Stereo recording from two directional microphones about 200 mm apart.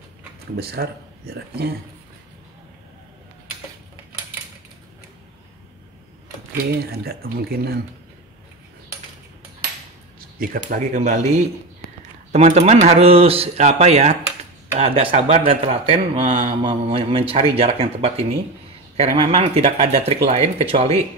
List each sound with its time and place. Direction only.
0.6 s speech: 50° right (ahead or behind)
6.7 s speech: 50° right (ahead or behind)
10.7 s speech: 40° right (ahead or behind)